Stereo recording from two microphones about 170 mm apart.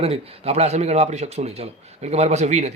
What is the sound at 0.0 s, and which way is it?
Speech, 35° right (ahead or behind).